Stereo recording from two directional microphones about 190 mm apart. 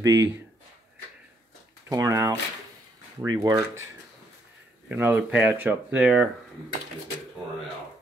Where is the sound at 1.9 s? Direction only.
15° right (ahead or behind).